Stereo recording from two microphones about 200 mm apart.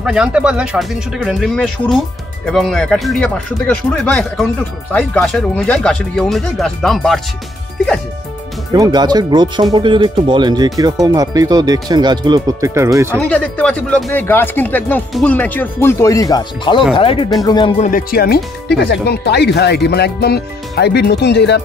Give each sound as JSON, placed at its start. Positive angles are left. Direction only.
{"t": 0.0, "sound": "speech", "side_deg": -5}
{"t": 8.7, "sound": "speech", "side_deg": -20}
{"t": 13.2, "sound": "speech", "side_deg": 5}
{"t": 17.7, "sound": "speech", "side_deg": 40}